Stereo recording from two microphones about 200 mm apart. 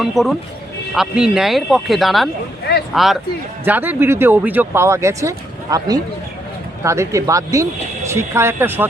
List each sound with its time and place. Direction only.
0.0 s speech: centre (ahead or behind)